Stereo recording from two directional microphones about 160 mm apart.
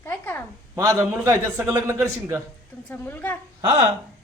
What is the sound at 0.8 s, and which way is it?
A man's voice, 15° right (ahead or behind).